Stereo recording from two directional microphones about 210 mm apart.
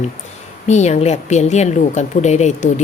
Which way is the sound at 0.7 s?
35° left (ahead or behind).